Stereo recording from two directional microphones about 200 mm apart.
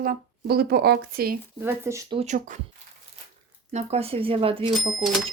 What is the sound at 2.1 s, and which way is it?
Speech, 30° right (ahead or behind).